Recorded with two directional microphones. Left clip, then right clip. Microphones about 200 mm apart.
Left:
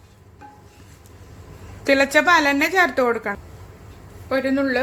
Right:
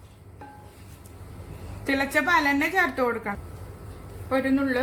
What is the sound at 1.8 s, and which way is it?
A woman's voice, 35° left (ahead or behind).